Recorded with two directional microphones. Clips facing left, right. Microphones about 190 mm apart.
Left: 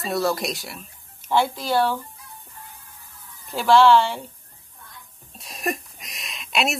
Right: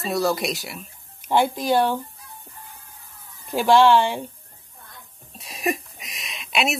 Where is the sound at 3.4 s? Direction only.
15° right (ahead or behind).